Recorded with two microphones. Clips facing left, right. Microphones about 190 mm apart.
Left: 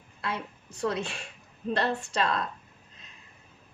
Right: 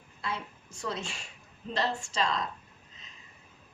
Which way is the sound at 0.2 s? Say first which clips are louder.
Left 3 dB; 60° left (ahead or behind).